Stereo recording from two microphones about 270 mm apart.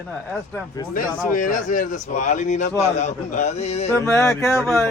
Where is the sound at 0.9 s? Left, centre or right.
Left.